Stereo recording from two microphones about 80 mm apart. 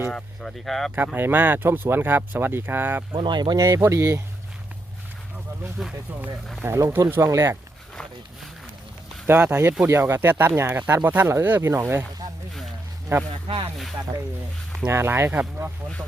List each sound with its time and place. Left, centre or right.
0.1 s speech: centre
0.9 s speech: right
3.1 s speech: right
3.6 s speech: right
5.8 s speech: centre
6.7 s speech: right
9.3 s speech: right
13.1 s speech: right
14.8 s speech: right